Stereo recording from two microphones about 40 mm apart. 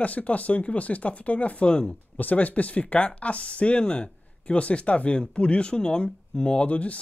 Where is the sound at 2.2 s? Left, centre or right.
Left.